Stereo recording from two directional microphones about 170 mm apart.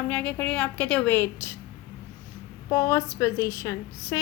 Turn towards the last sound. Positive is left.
turn(degrees=15)  # may be behind; listen again after turning